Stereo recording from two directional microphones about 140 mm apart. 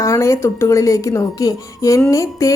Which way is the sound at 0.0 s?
20° left (ahead or behind).